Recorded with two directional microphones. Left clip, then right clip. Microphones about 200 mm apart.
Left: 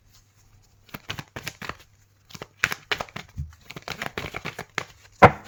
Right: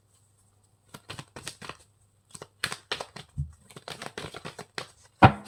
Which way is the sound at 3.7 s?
25° left (ahead or behind).